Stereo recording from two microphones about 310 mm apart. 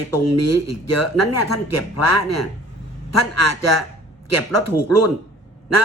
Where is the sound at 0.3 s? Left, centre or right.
Left.